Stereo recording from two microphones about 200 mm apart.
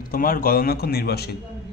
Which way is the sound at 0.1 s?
45° left (ahead or behind).